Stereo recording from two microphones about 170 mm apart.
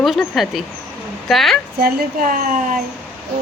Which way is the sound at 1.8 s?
60° right (ahead or behind).